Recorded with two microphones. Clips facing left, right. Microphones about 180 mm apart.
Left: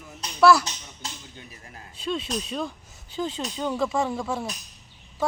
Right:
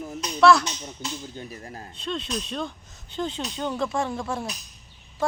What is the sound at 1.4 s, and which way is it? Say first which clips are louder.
Speech: right 8 dB; 40° right (ahead or behind).